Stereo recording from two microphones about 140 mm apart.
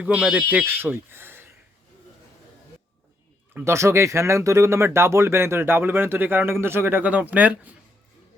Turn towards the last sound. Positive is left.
turn(degrees=-10)  # may be behind; listen again after turning